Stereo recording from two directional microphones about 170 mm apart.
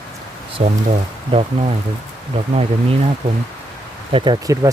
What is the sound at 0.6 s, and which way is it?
Speech, 40° right (ahead or behind).